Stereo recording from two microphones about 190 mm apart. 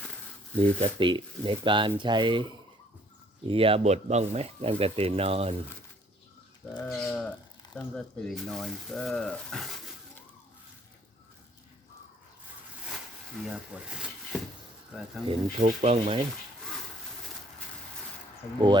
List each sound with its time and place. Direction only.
0.6 s speech: 25° right (ahead or behind)
6.7 s speech: 5° left (ahead or behind)
13.4 s speech: 5° right (ahead or behind)
15.3 s speech: 35° right (ahead or behind)